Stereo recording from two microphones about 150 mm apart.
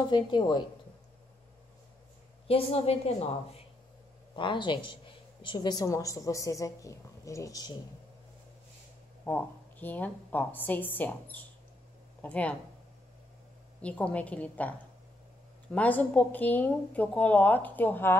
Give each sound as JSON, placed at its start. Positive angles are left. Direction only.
{"t": 0.1, "sound": "a woman's voice", "side_deg": 30}
{"t": 2.4, "sound": "a woman's voice", "side_deg": 40}
{"t": 9.2, "sound": "a woman's voice", "side_deg": 15}
{"t": 13.7, "sound": "a woman's voice", "side_deg": 10}